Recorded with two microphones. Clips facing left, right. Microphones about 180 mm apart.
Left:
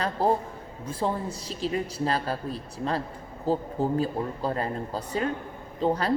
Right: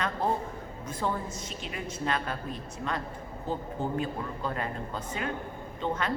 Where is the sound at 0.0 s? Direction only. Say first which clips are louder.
Left 5 dB; 35° left (ahead or behind).